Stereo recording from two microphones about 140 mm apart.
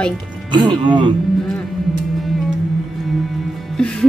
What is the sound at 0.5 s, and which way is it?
Speech, 35° right (ahead or behind).